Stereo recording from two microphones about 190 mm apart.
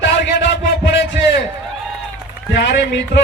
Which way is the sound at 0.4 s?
65° left (ahead or behind).